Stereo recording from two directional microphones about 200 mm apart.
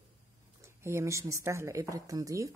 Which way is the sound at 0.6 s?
15° right (ahead or behind).